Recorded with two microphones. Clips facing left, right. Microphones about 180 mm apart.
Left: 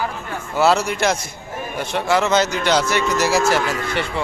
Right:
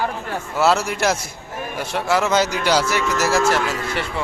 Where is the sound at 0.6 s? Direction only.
Centre (ahead or behind).